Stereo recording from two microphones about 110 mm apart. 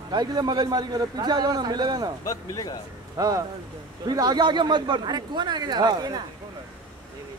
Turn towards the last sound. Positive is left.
turn(degrees=-35)  # may be behind; listen again after turning